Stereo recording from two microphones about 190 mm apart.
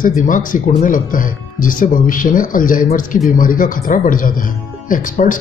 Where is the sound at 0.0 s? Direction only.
45° left (ahead or behind).